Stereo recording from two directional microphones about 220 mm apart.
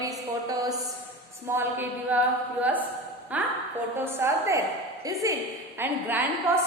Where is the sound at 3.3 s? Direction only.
5° right (ahead or behind).